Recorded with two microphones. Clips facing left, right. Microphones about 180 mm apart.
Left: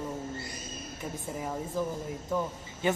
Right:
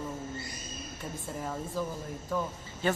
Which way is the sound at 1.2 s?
15° left (ahead or behind).